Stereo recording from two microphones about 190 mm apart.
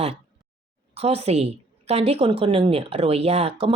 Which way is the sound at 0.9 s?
30° right (ahead or behind).